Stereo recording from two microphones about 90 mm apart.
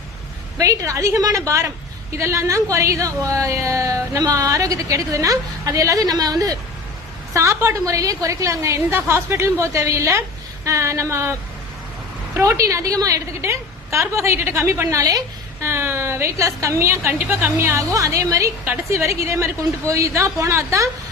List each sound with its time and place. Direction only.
0.6 s speech: 40° right (ahead or behind)
7.3 s speech: 30° right (ahead or behind)
12.4 s a woman's voice: 35° right (ahead or behind)
15.6 s speech: 30° right (ahead or behind)